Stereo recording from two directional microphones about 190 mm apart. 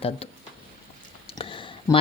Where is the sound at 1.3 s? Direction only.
25° left (ahead or behind).